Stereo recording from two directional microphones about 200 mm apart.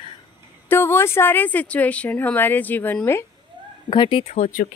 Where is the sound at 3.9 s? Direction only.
25° left (ahead or behind).